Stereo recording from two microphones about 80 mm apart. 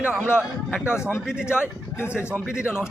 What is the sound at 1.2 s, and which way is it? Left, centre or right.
Speech, centre.